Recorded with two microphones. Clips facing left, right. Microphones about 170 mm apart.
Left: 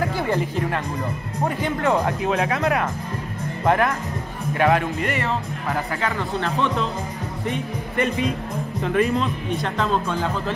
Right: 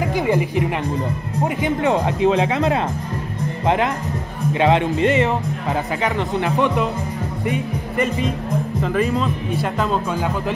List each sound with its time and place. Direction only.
0.0 s speech: 15° right (ahead or behind)
8.8 s speech: centre (ahead or behind)